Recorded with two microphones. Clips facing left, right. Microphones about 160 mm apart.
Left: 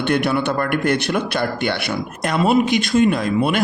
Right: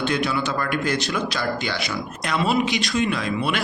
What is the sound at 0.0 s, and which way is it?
A man's voice, 60° left (ahead or behind).